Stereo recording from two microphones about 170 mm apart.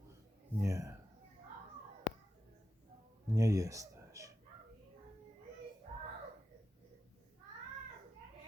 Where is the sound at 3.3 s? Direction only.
20° right (ahead or behind).